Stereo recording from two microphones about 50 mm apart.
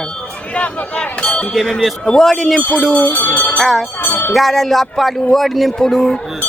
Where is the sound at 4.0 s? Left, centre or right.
Left.